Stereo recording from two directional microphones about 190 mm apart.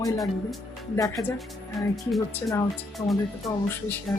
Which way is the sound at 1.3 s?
Centre (ahead or behind).